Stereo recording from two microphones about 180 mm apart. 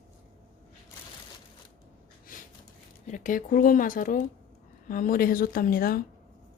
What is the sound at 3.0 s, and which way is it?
Speech, 45° left (ahead or behind).